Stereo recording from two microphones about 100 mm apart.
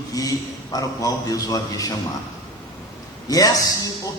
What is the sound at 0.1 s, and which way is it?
A man's voice, 35° left (ahead or behind).